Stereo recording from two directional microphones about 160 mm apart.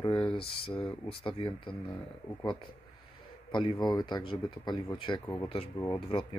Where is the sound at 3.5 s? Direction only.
30° left (ahead or behind).